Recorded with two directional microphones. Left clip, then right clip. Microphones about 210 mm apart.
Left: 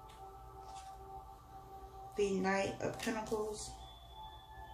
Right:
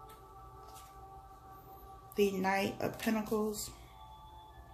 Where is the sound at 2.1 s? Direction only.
45° right (ahead or behind).